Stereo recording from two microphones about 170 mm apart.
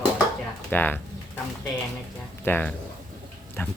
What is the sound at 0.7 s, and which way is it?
Speech, 10° left (ahead or behind).